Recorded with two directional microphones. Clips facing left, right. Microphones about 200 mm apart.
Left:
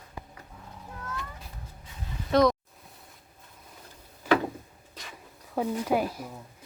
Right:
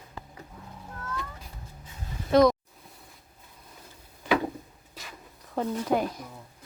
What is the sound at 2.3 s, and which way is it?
Speech, centre (ahead or behind).